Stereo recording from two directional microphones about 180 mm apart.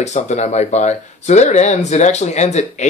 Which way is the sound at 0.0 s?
40° left (ahead or behind).